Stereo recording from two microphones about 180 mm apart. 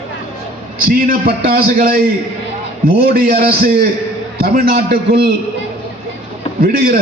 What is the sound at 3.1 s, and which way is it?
A man's voice, 60° right (ahead or behind).